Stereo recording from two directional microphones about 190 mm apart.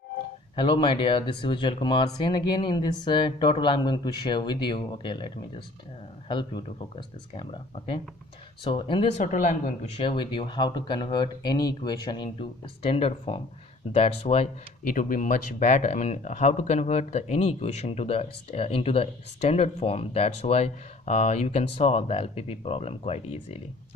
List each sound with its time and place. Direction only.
0.6 s speech: 25° left (ahead or behind)
9.2 s speech: 40° left (ahead or behind)
14.9 s speech: 45° left (ahead or behind)